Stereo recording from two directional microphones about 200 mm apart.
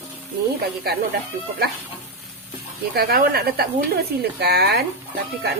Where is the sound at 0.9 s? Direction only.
50° right (ahead or behind).